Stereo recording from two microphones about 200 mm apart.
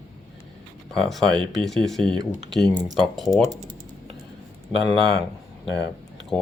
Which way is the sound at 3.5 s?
20° right (ahead or behind).